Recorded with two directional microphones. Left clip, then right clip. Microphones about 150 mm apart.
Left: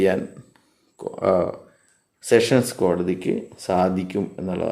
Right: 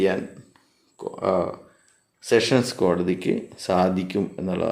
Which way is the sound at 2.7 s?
5° left (ahead or behind).